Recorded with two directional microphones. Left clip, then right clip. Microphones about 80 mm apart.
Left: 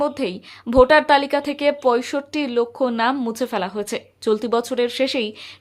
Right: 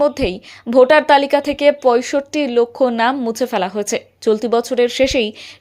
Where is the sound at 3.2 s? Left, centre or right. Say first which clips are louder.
Right 5 dB; right.